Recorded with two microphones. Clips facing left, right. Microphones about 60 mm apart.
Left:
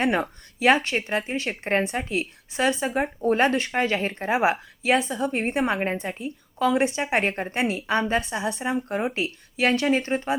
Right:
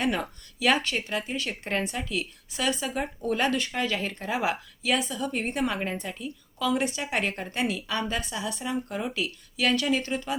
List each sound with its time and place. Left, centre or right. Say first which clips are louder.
0.0 s a woman's voice: left 4 dB; left